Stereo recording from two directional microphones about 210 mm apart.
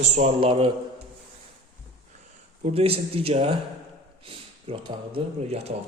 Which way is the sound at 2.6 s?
30° right (ahead or behind).